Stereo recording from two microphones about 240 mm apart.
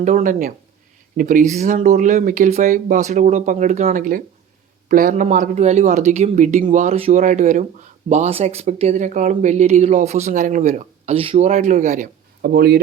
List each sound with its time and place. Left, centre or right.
0.0 s speech: right